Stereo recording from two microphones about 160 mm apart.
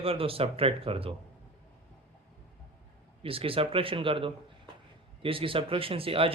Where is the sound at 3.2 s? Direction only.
35° right (ahead or behind).